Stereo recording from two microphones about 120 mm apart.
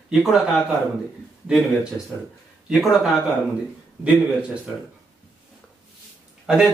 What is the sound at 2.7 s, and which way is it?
Speech, centre (ahead or behind).